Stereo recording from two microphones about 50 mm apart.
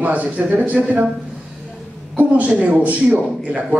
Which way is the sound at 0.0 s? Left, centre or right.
Right.